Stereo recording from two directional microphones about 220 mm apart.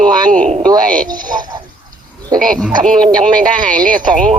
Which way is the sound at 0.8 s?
40° right (ahead or behind).